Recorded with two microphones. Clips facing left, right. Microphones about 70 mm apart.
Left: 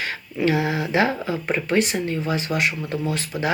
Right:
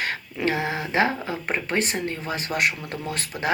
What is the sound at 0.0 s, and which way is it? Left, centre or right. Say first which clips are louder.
Speech: left 3 dB; right.